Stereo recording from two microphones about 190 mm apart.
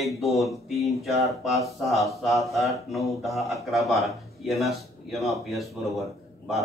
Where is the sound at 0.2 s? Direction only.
Centre (ahead or behind).